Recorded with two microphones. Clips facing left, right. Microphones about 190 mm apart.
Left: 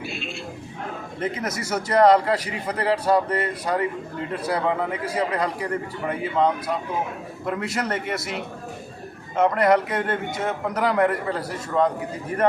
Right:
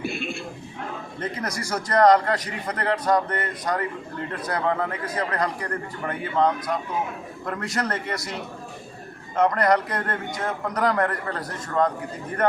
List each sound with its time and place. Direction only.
0.0 s a sound: 50° right (ahead or behind)
1.2 s a man's voice: 5° left (ahead or behind)
9.3 s a man's voice: 5° left (ahead or behind)